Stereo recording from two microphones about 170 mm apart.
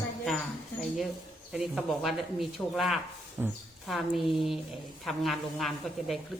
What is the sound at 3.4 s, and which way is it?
Speech, 10° right (ahead or behind).